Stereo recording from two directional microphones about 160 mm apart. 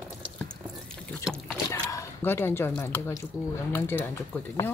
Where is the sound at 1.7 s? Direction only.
15° left (ahead or behind).